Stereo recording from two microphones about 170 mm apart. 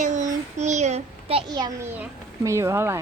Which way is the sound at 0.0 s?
45° right (ahead or behind).